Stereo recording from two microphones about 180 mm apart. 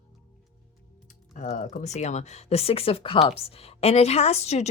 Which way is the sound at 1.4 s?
40° left (ahead or behind).